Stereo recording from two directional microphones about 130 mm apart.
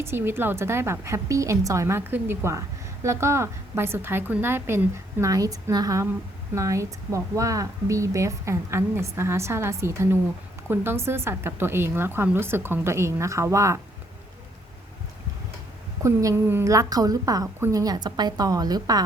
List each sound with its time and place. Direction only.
0.0 s a woman's voice: 15° right (ahead or behind)
16.0 s a woman's voice: 20° right (ahead or behind)